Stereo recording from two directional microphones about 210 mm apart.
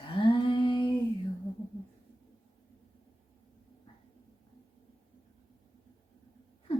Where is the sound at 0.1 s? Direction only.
25° left (ahead or behind).